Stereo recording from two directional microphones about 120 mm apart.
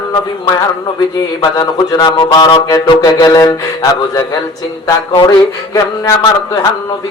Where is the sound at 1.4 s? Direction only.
30° left (ahead or behind).